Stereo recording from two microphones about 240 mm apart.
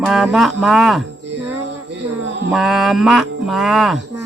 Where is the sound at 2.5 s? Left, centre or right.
Centre.